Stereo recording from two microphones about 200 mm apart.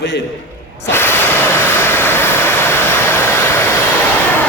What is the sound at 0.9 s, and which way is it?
Vehicle, 10° left (ahead or behind).